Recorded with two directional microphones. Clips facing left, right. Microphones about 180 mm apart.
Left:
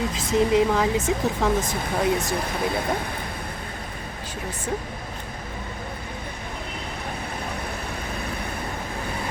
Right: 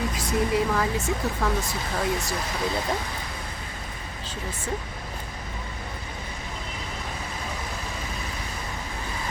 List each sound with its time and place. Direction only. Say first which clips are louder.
0.1 s speech: left 4 dB; 25° left (ahead or behind)
2.3 s speech: left 3 dB; 55° left (ahead or behind)